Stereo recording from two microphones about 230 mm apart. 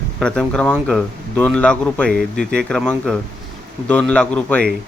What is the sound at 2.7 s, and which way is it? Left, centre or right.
Speech, centre.